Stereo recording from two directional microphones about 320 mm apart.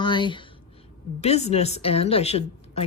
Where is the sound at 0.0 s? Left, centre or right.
Centre.